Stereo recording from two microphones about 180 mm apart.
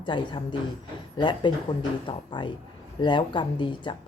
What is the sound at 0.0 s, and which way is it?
Speech, 25° left (ahead or behind).